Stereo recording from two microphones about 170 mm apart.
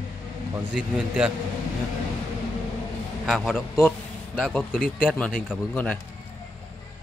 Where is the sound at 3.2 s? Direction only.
Centre (ahead or behind).